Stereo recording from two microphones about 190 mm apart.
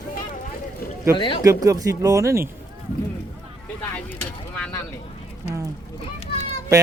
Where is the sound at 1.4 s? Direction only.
15° right (ahead or behind).